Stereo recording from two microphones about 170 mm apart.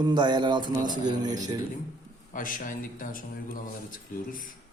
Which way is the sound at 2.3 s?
50° left (ahead or behind).